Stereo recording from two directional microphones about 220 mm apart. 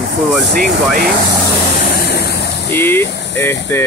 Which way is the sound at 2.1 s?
50° left (ahead or behind).